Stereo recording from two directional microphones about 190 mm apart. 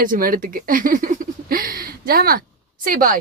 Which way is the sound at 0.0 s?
45° right (ahead or behind).